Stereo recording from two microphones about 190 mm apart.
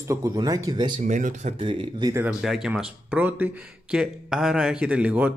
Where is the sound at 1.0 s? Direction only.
40° right (ahead or behind).